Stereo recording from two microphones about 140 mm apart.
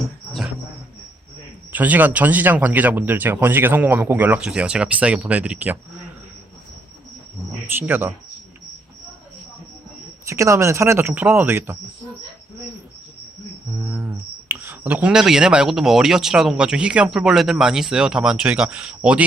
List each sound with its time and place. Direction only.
1.7 s speech: 10° right (ahead or behind)
7.8 s speech: 15° right (ahead or behind)
10.2 s speech: 20° right (ahead or behind)
13.9 s speech: 10° right (ahead or behind)